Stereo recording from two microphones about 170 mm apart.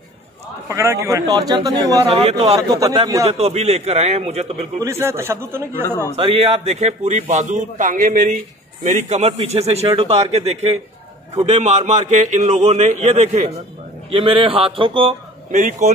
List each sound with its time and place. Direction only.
0.7 s a man's voice: 20° right (ahead or behind)
2.0 s a man's voice: 35° right (ahead or behind)
2.5 s a man's voice: 20° right (ahead or behind)
3.3 s a man's voice: 40° right (ahead or behind)
4.7 s a man's voice: 15° right (ahead or behind)
6.1 s a man's voice: 35° right (ahead or behind)
15.5 s a man's voice: 45° right (ahead or behind)